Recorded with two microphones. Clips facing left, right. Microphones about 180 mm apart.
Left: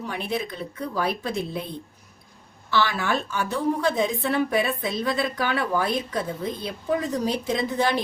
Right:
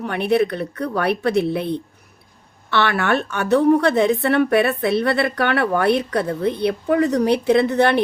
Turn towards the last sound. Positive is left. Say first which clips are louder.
# right 8 dB
turn(degrees=-65)  # may be behind; listen again after turning